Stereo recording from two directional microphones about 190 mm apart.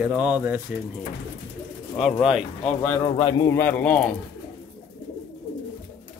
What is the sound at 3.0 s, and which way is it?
Speech, 25° left (ahead or behind).